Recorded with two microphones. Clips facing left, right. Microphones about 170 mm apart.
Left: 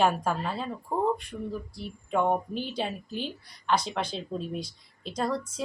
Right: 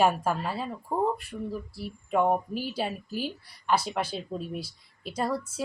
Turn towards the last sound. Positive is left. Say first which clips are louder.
# even
turn(degrees=-5)  # may be behind; listen again after turning